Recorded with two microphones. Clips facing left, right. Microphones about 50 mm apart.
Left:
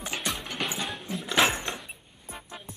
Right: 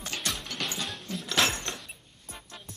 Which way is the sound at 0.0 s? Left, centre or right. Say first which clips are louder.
Left 2 dB; centre.